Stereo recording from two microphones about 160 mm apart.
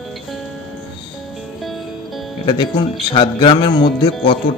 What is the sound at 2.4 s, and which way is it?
Speech, 30° left (ahead or behind).